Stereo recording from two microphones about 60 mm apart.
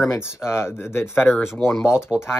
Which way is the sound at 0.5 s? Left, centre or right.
Left.